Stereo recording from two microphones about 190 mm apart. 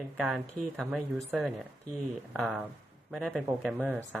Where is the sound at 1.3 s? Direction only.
Centre (ahead or behind).